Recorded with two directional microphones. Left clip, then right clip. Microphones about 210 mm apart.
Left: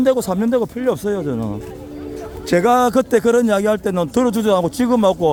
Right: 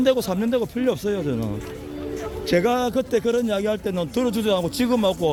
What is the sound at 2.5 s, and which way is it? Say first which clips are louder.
A man's voice: left 7 dB; 20° left (ahead or behind).